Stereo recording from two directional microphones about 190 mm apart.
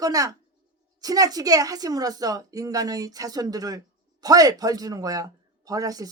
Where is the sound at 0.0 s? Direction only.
20° right (ahead or behind).